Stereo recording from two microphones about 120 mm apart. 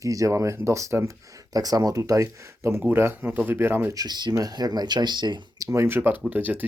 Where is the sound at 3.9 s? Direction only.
35° right (ahead or behind).